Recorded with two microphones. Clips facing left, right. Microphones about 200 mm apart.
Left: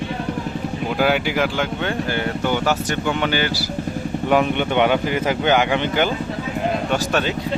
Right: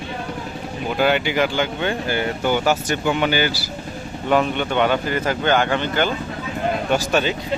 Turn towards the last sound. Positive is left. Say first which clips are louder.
# right 1 dB
turn(degrees=0)  # may be behind; listen again after turning